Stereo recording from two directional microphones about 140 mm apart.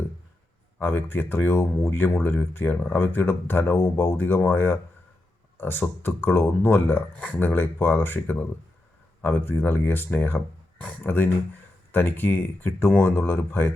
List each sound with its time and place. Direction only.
0.8 s speech: 15° left (ahead or behind)